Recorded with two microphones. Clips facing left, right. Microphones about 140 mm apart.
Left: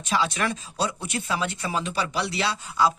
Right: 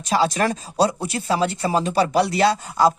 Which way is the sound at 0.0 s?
40° right (ahead or behind).